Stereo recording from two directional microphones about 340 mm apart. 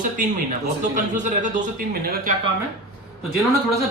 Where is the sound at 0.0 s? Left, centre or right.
Right.